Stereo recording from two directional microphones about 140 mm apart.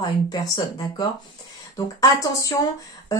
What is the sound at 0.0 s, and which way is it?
Speech, 30° left (ahead or behind).